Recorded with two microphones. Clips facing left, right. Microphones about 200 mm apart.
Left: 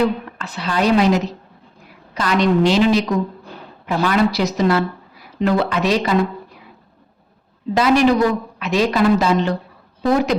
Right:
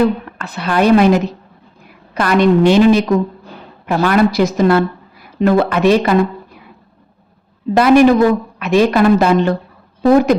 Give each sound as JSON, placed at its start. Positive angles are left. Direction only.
{"t": 0.3, "sound": "a woman's voice", "side_deg": -55}
{"t": 7.7, "sound": "a woman's voice", "side_deg": -55}